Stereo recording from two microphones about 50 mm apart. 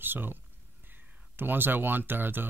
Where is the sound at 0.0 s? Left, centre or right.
Right.